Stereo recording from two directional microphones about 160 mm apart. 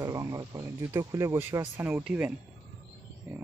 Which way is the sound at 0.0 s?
20° right (ahead or behind).